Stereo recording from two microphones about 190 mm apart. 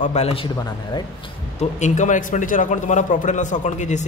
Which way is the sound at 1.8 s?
40° left (ahead or behind).